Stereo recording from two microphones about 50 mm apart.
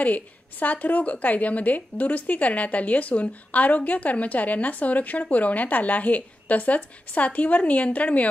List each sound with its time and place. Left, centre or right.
0.0 s a woman's voice: left